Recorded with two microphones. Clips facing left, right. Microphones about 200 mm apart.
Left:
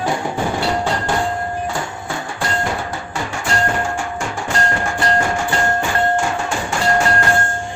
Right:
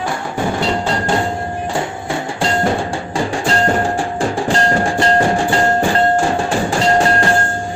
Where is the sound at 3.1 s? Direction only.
35° right (ahead or behind).